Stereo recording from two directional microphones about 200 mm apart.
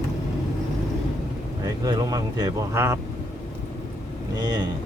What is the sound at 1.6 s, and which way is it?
Speech, 20° right (ahead or behind).